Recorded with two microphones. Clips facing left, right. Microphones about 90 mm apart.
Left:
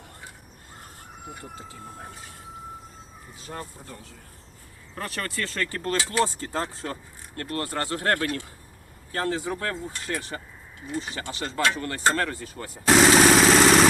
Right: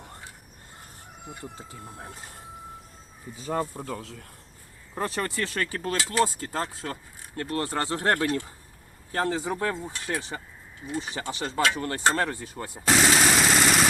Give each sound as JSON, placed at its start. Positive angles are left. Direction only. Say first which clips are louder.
{"t": 3.8, "sound": "speech", "louder": "right 8 dB", "side_deg": -90}
{"t": 4.9, "sound": "speech", "louder": "right 3 dB", "side_deg": -20}
{"t": 7.3, "sound": "speech", "louder": "right 1 dB", "side_deg": -20}
{"t": 13.0, "sound": "vehicle", "louder": "left 6 dB", "side_deg": 90}